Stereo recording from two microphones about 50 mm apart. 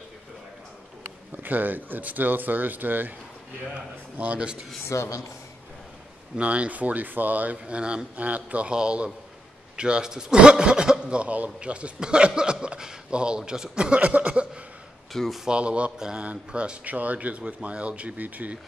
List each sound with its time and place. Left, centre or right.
1.3 s speech: right
4.2 s a man's voice: right
4.8 s speech: left
6.3 s speech: right
7.5 s a man's voice: right
15.1 s speech: centre
15.4 s a man's voice: right